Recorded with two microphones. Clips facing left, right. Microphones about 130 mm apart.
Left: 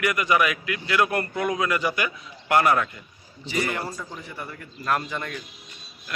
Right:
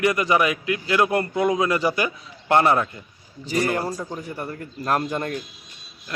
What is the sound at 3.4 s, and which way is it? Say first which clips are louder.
A man's voice: right 5 dB; 40° right (ahead or behind).